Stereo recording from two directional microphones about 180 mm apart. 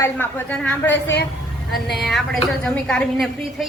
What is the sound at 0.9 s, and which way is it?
Speech, 70° left (ahead or behind).